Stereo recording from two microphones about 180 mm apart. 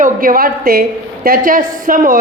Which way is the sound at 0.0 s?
50° right (ahead or behind).